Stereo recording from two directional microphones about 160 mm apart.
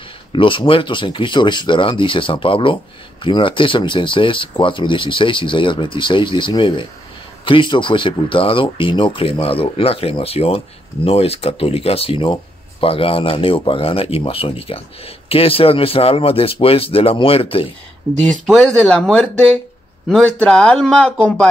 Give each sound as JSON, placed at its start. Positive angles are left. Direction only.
{"t": 0.3, "sound": "speech", "side_deg": 30}
{"t": 18.1, "sound": "speech", "side_deg": 0}